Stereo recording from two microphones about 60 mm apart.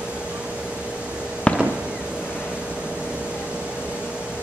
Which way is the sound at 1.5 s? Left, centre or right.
Left.